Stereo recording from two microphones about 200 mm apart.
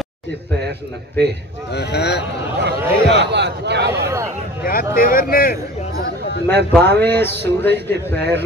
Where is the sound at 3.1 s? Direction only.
60° right (ahead or behind).